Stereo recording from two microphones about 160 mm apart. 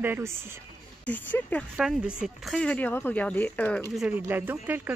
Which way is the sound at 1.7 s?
5° right (ahead or behind).